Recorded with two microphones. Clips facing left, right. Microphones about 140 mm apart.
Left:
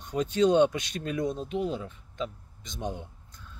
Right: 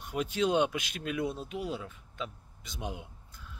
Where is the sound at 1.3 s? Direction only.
40° left (ahead or behind).